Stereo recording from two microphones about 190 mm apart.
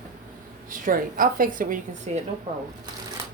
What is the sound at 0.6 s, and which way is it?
A woman's voice, 45° right (ahead or behind).